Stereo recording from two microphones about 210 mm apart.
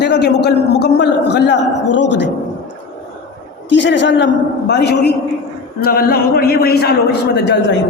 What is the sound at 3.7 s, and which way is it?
A man's voice, 60° left (ahead or behind).